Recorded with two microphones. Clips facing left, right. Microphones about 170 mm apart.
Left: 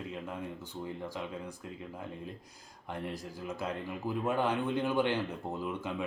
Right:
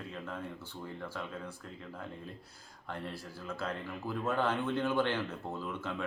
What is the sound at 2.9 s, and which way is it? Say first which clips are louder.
Speech: left 3 dB; 15° left (ahead or behind).